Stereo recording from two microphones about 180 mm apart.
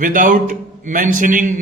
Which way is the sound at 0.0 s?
45° right (ahead or behind).